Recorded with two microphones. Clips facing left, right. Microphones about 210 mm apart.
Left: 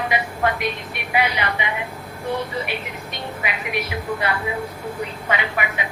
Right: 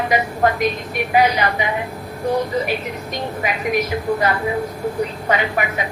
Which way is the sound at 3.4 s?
40° right (ahead or behind).